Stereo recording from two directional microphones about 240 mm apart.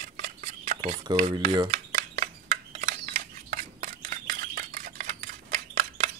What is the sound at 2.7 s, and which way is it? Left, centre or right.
Camera, right.